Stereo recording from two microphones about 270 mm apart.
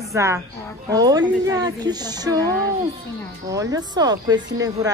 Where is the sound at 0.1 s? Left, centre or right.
Centre.